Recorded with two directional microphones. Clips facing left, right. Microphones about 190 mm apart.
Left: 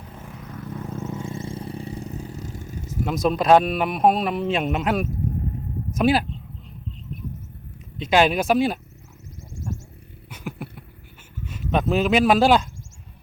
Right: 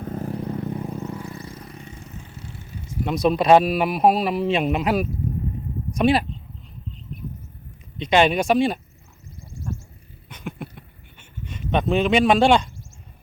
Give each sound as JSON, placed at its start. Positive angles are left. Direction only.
{"t": 0.0, "sound": "vehicle", "side_deg": -40}
{"t": 1.1, "sound": "vehicle", "side_deg": 25}
{"t": 3.1, "sound": "speech", "side_deg": 0}
{"t": 7.9, "sound": "speech", "side_deg": 0}
{"t": 10.2, "sound": "a sound", "side_deg": 5}
{"t": 11.4, "sound": "speech", "side_deg": 5}